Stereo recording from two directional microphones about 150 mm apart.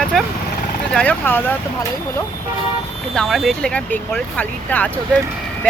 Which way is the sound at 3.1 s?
Centre (ahead or behind).